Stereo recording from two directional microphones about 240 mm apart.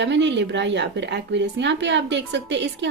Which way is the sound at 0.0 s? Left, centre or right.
Right.